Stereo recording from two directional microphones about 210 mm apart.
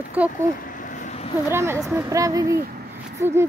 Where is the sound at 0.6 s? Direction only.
40° left (ahead or behind).